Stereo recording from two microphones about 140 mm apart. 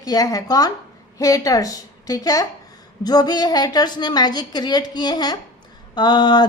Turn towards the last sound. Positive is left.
turn(degrees=30)  # may be behind; listen again after turning